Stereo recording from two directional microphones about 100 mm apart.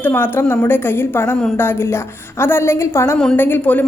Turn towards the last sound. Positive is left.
turn(degrees=20)  # may be behind; listen again after turning